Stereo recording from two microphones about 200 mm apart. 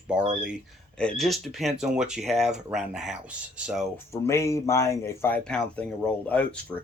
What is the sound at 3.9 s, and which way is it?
Speech, 15° left (ahead or behind).